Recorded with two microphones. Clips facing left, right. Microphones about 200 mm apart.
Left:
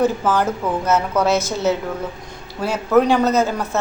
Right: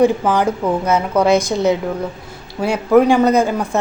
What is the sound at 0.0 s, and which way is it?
Speech, 15° right (ahead or behind).